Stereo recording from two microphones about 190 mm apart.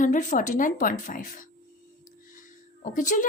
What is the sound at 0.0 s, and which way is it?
Speech, 45° left (ahead or behind).